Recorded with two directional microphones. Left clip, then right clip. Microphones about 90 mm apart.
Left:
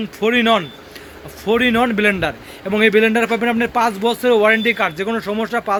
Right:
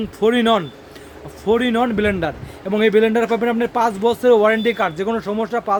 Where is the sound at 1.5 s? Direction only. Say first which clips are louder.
Left 2 dB; 30° right (ahead or behind).